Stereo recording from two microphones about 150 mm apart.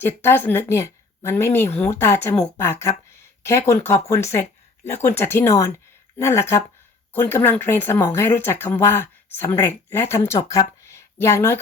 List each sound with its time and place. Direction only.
0.0 s speech: 15° left (ahead or behind)